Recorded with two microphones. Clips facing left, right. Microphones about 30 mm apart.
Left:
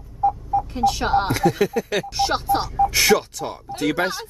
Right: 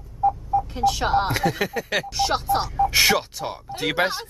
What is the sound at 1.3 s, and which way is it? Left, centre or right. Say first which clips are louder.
Speech: left 4 dB; centre.